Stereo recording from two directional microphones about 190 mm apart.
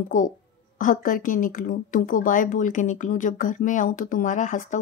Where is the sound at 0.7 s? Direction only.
45° left (ahead or behind).